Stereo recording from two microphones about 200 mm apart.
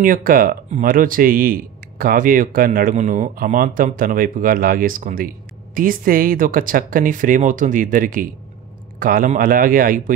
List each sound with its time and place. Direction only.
0.0 s speech: 45° right (ahead or behind)